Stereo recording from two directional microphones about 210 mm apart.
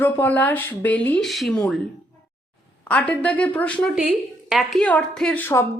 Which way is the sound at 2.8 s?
5° left (ahead or behind).